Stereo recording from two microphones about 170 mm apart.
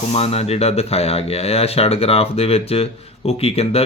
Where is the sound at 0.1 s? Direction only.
35° left (ahead or behind).